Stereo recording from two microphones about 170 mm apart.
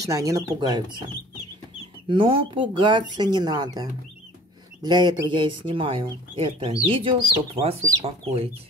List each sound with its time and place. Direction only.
0.0 s speech: 20° right (ahead or behind)
4.8 s speech: 25° right (ahead or behind)